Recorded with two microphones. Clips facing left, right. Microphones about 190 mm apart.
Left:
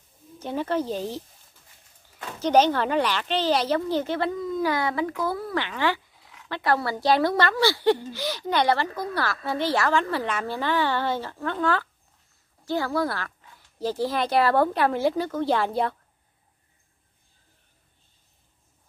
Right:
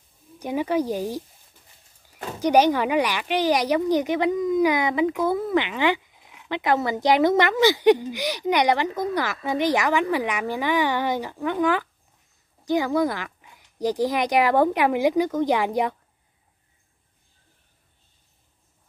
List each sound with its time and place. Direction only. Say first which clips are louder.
0.4 s speech: right 3 dB; 10° right (ahead or behind)
2.3 s speech: right 2 dB; 15° right (ahead or behind)